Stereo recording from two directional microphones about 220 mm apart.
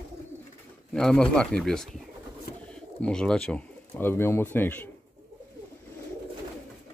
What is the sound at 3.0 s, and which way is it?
Speech, 5° left (ahead or behind).